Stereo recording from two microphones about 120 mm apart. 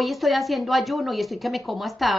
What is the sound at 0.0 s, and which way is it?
A woman's voice, centre (ahead or behind).